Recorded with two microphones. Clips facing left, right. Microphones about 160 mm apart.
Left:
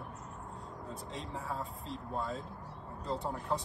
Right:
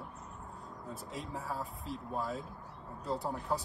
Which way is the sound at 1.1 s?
Centre (ahead or behind).